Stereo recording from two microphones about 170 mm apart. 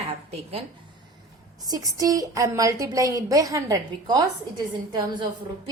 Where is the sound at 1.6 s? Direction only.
20° right (ahead or behind).